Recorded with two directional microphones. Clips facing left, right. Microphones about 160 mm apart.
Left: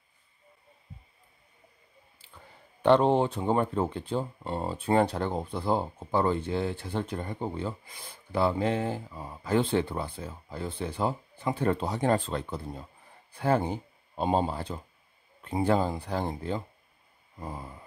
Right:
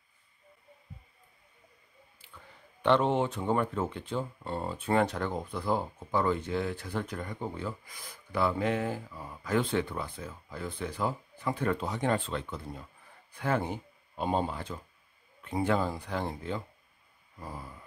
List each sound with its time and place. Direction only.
2.2 s speech: 35° left (ahead or behind)